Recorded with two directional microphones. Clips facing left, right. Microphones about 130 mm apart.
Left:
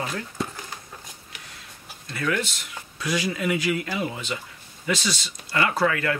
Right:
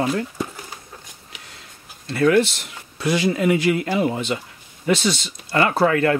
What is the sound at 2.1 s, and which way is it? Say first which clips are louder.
Speech: right 10 dB; 55° right (ahead or behind).